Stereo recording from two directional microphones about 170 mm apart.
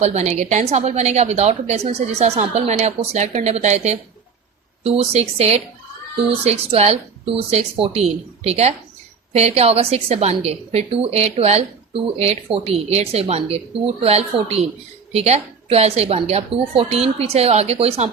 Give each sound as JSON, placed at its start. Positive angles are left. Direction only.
{"t": 0.0, "sound": "a woman's voice", "side_deg": -40}